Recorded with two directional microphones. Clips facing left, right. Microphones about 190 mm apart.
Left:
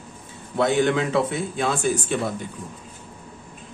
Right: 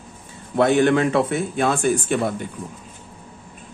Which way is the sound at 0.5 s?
55° right (ahead or behind).